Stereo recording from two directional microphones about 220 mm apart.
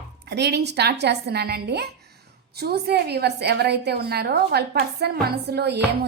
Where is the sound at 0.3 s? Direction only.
50° right (ahead or behind).